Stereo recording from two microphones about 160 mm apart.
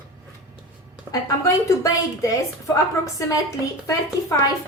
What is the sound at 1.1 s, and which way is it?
A woman's voice, 20° left (ahead or behind).